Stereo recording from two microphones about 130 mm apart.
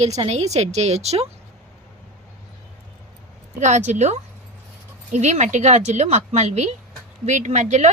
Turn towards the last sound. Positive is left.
turn(degrees=-65)  # may be behind; listen again after turning